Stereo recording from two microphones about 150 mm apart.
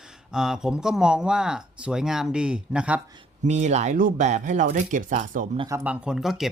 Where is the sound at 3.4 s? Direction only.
50° right (ahead or behind).